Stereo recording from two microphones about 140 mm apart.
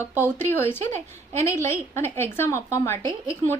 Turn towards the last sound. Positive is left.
turn(degrees=20)  # may be behind; listen again after turning